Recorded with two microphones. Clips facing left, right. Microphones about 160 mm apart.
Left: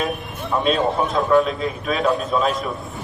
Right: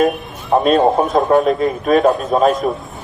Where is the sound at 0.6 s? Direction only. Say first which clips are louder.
Right 6 dB; 45° right (ahead or behind).